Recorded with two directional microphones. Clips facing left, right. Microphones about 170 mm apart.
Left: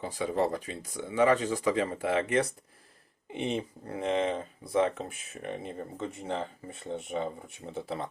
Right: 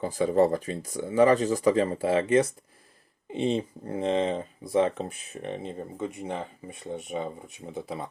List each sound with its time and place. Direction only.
0.0 s speech: 45° right (ahead or behind); by 8.0 s 15° right (ahead or behind)